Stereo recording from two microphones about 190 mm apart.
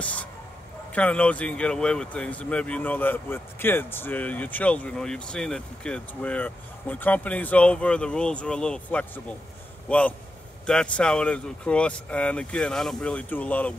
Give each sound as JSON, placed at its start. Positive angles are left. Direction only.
{"t": 0.0, "sound": "speech", "side_deg": 5}